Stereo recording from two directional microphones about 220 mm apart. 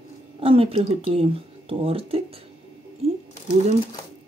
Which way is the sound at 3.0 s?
30° right (ahead or behind).